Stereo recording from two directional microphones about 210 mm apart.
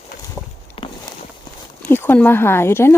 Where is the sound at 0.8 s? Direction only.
25° left (ahead or behind).